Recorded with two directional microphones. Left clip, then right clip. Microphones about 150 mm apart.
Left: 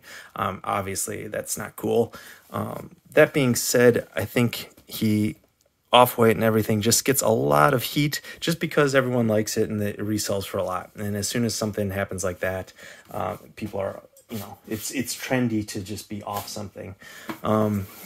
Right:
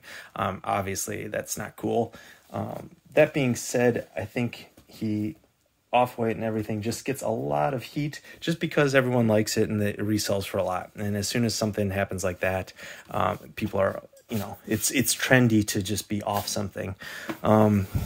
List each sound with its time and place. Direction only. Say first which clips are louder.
0.1 s speech: left 2 dB; centre (ahead or behind)
1.8 s speech: left 4 dB; 20° left (ahead or behind); by 8.2 s 55° left (ahead or behind)
8.3 s speech: left 3 dB; 30° left (ahead or behind)
8.5 s speech: left 2 dB; 15° left (ahead or behind)
12.8 s speech: right 5 dB; 20° right (ahead or behind)
13.7 s speech: right 4 dB; 40° right (ahead or behind)
14.7 s speech: right 4 dB; 65° right (ahead or behind)
17.0 s speech: right 1 dB; 25° right (ahead or behind)